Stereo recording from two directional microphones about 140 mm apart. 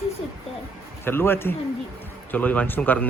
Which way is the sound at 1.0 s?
15° left (ahead or behind).